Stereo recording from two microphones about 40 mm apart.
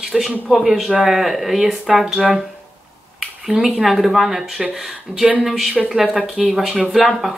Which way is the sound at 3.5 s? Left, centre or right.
Right.